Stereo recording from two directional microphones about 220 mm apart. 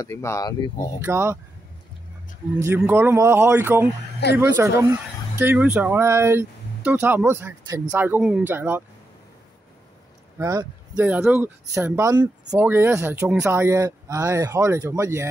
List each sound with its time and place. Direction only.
0.0 s speech: 10° left (ahead or behind)
1.0 s speech: 10° right (ahead or behind)
2.6 s speech: 10° right (ahead or behind)
10.4 s speech: 15° right (ahead or behind)
11.0 s speech: 5° right (ahead or behind)